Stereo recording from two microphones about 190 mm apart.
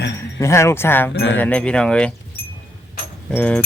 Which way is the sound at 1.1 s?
75° left (ahead or behind).